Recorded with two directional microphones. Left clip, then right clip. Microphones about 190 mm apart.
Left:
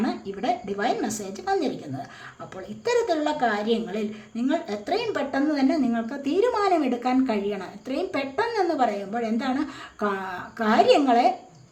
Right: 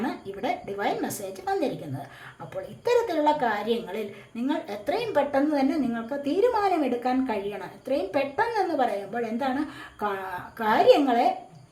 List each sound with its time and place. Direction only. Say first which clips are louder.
0.0 s a woman's voice: left 3 dB; 15° left (ahead or behind)